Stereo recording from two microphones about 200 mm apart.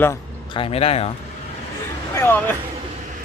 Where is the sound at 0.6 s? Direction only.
30° left (ahead or behind).